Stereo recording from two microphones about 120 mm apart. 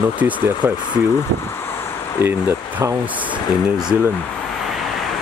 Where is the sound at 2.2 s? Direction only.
20° right (ahead or behind).